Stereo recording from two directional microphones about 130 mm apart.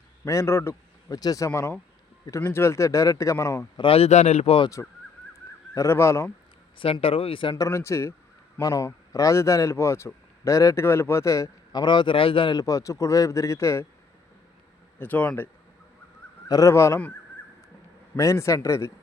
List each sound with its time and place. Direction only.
0.3 s a man's voice: 20° left (ahead or behind)
3.8 s speech: 45° left (ahead or behind)
5.7 s a man's voice: 20° left (ahead or behind)
6.7 s speech: 40° left (ahead or behind)
7.5 s a man's voice: 20° left (ahead or behind)
14.9 s speech: 15° left (ahead or behind)
16.5 s a man's voice: 25° left (ahead or behind)
18.2 s a man's voice: 25° left (ahead or behind)